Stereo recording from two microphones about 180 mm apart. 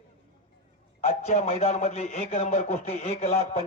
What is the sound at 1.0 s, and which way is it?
A man's voice, 40° left (ahead or behind).